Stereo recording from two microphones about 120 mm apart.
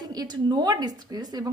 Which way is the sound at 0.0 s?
35° right (ahead or behind).